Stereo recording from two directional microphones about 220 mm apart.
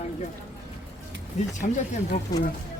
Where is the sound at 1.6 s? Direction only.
30° left (ahead or behind).